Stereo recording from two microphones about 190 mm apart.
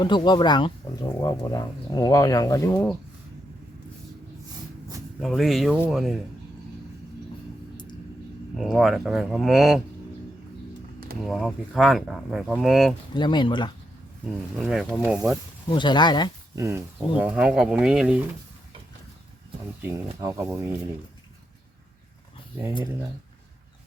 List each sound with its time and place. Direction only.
0.0 s speech: 25° left (ahead or behind)
5.2 s speech: centre (ahead or behind)
8.5 s speech: centre (ahead or behind)
11.2 s speech: centre (ahead or behind)
13.1 s speech: 25° left (ahead or behind)
14.6 s speech: centre (ahead or behind)
15.7 s speech: 25° left (ahead or behind)
16.6 s speech: 15° right (ahead or behind)
19.8 s speech: 15° right (ahead or behind)